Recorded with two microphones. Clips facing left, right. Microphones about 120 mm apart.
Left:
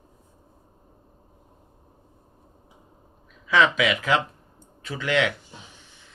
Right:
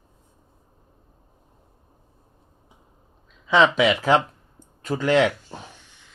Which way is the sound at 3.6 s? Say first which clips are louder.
Right 4 dB; 35° right (ahead or behind).